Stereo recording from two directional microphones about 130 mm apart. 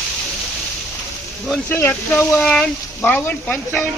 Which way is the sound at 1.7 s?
20° left (ahead or behind).